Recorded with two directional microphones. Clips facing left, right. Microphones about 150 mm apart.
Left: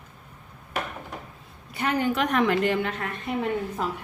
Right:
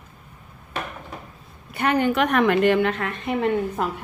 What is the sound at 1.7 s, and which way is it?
A woman's voice, 65° right (ahead or behind).